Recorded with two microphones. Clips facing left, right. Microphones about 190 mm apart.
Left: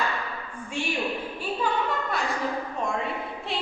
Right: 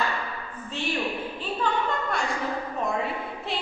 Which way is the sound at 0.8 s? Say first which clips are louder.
Left 1 dB; 15° left (ahead or behind).